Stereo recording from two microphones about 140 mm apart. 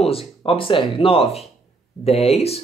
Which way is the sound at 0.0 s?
45° left (ahead or behind).